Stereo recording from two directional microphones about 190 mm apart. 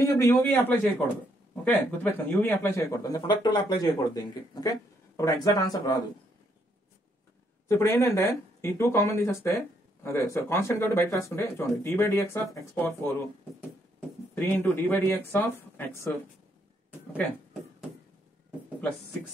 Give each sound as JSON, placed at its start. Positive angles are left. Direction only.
{"t": 0.0, "sound": "speech", "side_deg": 15}
{"t": 7.6, "sound": "speech", "side_deg": 15}
{"t": 14.3, "sound": "speech", "side_deg": 10}